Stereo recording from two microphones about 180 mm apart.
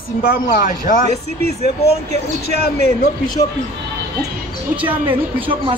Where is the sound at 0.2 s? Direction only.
55° left (ahead or behind).